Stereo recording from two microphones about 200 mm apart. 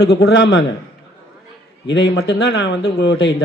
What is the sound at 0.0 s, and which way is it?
Speech, 55° left (ahead or behind).